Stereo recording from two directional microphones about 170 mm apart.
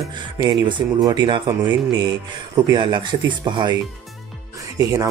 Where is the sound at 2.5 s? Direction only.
25° right (ahead or behind).